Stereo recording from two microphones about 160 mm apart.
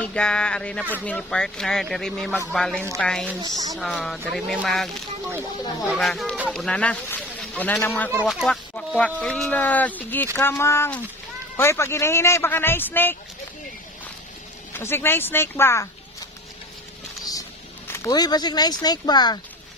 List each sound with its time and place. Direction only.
0.0 s speech: 5° left (ahead or behind)
3.4 s speech: 25° right (ahead or behind)
3.7 s speech: centre (ahead or behind)
14.7 s speech: 15° left (ahead or behind)
17.3 s speech: 20° left (ahead or behind)